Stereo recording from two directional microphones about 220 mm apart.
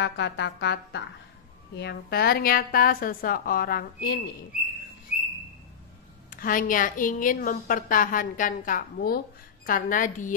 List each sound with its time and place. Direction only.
0.0 s music: 50° left (ahead or behind)
1.8 s a woman's voice: 45° left (ahead or behind)
6.3 s a woman's voice: 40° left (ahead or behind)